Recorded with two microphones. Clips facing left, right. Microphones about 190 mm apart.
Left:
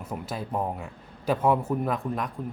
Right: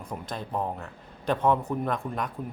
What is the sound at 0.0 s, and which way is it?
A man's voice, 5° left (ahead or behind).